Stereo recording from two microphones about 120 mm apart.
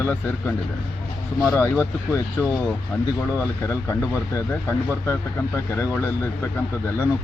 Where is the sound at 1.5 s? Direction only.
20° left (ahead or behind).